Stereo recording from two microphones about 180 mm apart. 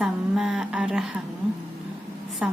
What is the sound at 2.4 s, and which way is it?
Speech, 5° right (ahead or behind).